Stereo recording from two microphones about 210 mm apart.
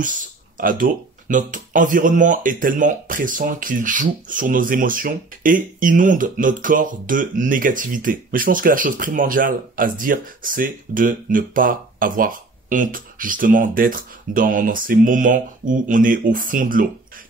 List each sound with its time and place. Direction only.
0.0 s speech: 40° right (ahead or behind)